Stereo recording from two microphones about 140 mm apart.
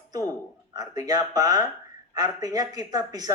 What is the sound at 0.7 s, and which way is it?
Speech, 25° right (ahead or behind).